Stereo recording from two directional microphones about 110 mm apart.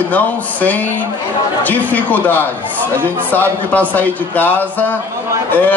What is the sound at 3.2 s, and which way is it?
A man's voice, 15° left (ahead or behind).